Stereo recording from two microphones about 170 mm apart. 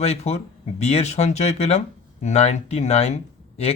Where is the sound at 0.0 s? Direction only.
40° left (ahead or behind).